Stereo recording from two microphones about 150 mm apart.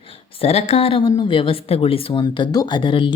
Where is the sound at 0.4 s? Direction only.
45° left (ahead or behind).